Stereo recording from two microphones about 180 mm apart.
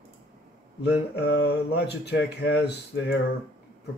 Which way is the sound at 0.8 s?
65° left (ahead or behind).